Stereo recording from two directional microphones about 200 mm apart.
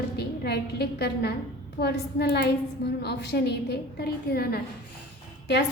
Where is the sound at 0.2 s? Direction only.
55° left (ahead or behind).